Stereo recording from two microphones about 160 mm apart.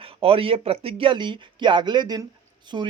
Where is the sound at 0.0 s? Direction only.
35° right (ahead or behind).